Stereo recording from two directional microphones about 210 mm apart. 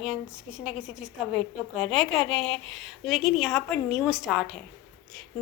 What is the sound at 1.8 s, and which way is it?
Speech, centre (ahead or behind).